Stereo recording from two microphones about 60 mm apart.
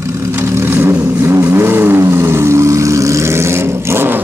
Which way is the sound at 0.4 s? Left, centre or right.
Right.